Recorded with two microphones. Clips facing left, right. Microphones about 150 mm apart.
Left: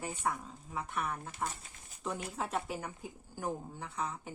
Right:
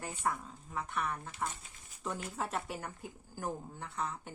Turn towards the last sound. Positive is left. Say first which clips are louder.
# even
turn(degrees=0)  # may be behind; listen again after turning